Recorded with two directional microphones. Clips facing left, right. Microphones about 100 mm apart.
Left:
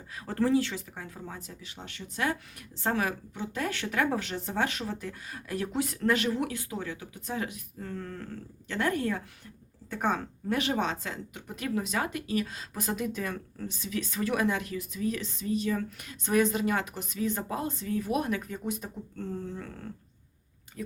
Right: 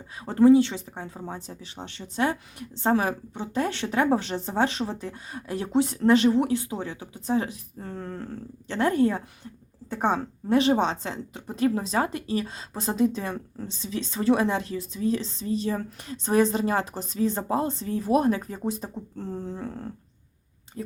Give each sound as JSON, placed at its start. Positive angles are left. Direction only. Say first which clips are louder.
{"t": 0.2, "sound": "a woman's voice", "louder": "right 9 dB", "side_deg": -20}